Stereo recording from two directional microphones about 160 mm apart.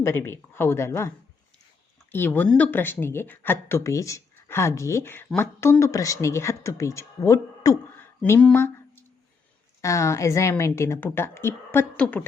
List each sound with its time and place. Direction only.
0.0 s speech: 15° left (ahead or behind)
2.1 s speech: 10° left (ahead or behind)
8.2 s speech: 10° left (ahead or behind)